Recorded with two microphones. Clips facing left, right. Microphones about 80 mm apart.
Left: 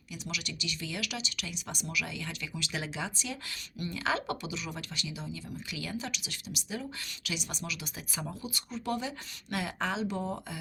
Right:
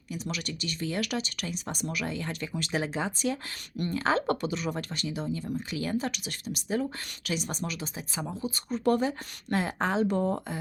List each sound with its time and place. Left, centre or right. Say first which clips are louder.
0.1 s speech: right 5 dB; right
8.1 s speech: right 3 dB; right
8.4 s speech: right 10 dB; right